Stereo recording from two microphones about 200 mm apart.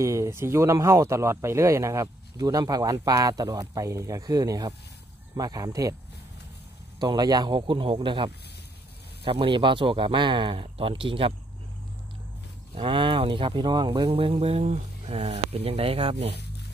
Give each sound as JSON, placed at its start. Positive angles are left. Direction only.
{"t": 0.0, "sound": "speech", "side_deg": -15}
{"t": 7.0, "sound": "speech", "side_deg": -20}
{"t": 12.7, "sound": "speech", "side_deg": -25}